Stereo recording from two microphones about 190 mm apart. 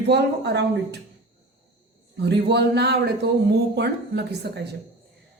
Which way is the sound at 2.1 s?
65° right (ahead or behind).